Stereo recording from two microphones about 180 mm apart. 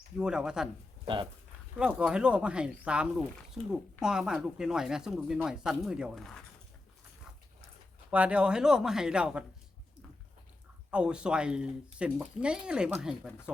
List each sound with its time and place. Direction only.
0.2 s speech: 5° right (ahead or behind)
1.0 s speech: 25° right (ahead or behind)
1.8 s speech: 5° right (ahead or behind)
8.1 s speech: 5° right (ahead or behind)
10.9 s speech: 5° right (ahead or behind)